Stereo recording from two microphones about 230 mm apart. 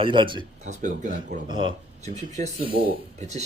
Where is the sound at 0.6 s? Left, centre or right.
Right.